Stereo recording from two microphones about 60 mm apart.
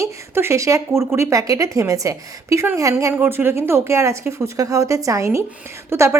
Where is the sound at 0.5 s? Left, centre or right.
Right.